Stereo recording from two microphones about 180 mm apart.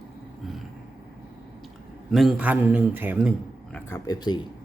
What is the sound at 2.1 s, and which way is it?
Speech, 5° right (ahead or behind).